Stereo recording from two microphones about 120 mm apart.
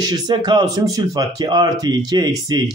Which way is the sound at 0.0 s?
35° right (ahead or behind).